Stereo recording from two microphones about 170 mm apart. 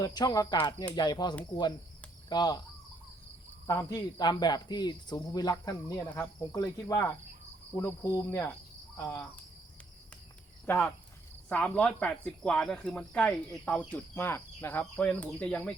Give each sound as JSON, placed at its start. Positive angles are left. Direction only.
{"t": 0.0, "sound": "speech", "side_deg": 25}
{"t": 3.7, "sound": "speech", "side_deg": 20}
{"t": 10.7, "sound": "speech", "side_deg": 10}